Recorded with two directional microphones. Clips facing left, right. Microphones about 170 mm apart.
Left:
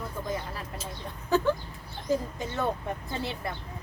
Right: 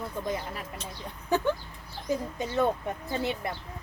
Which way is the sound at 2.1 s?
20° right (ahead or behind).